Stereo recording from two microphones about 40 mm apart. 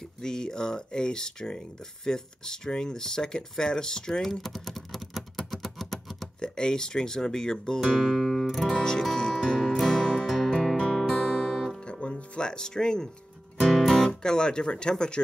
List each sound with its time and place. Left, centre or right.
0.2 s speech: centre
4.2 s typing: centre
5.5 s a sound: centre
6.4 s speech: centre
7.8 s music: centre
8.6 s speech: centre
9.1 s music: centre
11.0 s music: centre
11.8 s music: left
13.6 s music: centre
13.9 s speech: centre